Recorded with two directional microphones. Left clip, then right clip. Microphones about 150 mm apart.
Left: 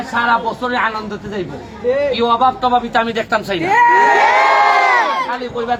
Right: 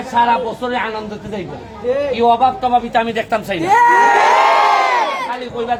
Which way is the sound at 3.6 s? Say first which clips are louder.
Right 1 dB; 45° right (ahead or behind).